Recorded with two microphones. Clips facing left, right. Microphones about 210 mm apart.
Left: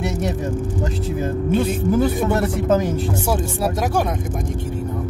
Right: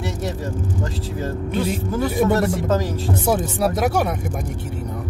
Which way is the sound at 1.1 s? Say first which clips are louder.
Left 5 dB; 20° left (ahead or behind).